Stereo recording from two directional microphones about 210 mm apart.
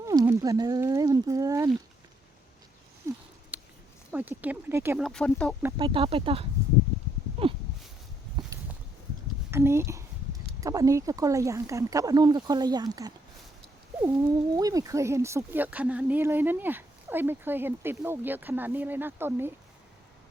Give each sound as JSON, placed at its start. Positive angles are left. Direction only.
{"t": 0.0, "sound": "speech", "side_deg": -15}
{"t": 3.1, "sound": "a sound", "side_deg": -15}
{"t": 4.1, "sound": "speech", "side_deg": -10}
{"t": 5.0, "sound": "speech", "side_deg": 5}
{"t": 5.7, "sound": "speech", "side_deg": -25}
{"t": 7.5, "sound": "a sound", "side_deg": -25}
{"t": 9.5, "sound": "speech", "side_deg": -10}
{"t": 14.5, "sound": "speech", "side_deg": -15}